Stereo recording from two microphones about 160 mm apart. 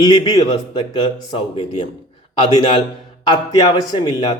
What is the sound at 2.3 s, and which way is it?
Speech, 30° left (ahead or behind).